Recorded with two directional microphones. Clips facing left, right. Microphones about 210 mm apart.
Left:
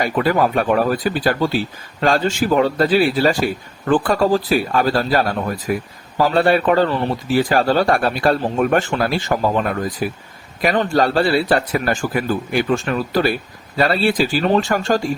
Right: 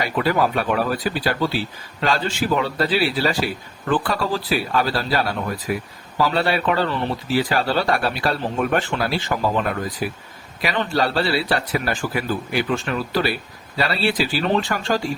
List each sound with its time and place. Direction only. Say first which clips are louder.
0.0 s a man's voice: left 3 dB; 50° left (ahead or behind)